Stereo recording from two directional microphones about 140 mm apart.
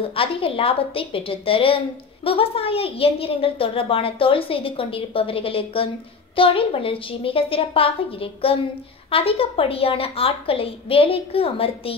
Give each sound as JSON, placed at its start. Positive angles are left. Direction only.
{"t": 0.1, "sound": "a woman's voice", "side_deg": 40}